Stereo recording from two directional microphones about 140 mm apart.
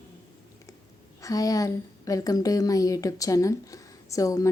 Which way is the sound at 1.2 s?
25° left (ahead or behind).